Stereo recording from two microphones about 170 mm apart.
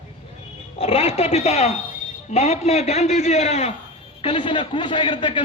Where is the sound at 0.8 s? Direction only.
35° left (ahead or behind).